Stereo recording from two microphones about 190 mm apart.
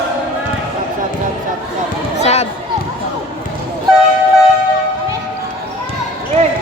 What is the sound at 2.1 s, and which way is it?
Basketball bounce, 35° left (ahead or behind).